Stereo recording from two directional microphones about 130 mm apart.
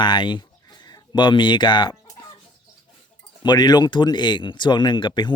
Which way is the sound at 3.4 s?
30° left (ahead or behind).